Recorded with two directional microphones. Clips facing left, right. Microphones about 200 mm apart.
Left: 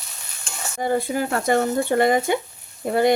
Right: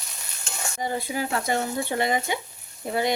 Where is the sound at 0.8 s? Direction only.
50° left (ahead or behind).